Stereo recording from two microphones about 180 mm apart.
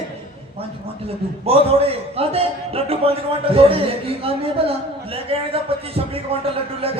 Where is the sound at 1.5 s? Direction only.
35° right (ahead or behind).